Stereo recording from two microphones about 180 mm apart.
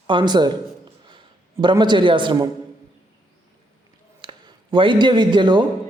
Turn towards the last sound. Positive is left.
turn(degrees=-25)  # may be behind; listen again after turning